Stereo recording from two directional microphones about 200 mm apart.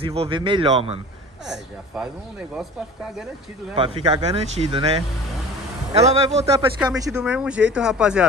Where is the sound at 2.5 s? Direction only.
Centre (ahead or behind).